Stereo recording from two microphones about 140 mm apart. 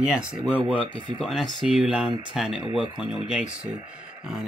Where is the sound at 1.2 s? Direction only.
Centre (ahead or behind).